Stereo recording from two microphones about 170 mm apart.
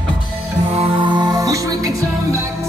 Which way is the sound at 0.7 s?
30° right (ahead or behind).